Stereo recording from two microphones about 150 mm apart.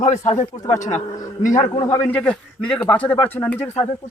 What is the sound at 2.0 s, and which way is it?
A man's voice, 5° left (ahead or behind).